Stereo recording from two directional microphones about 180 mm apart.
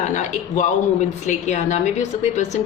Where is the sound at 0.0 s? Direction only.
45° left (ahead or behind).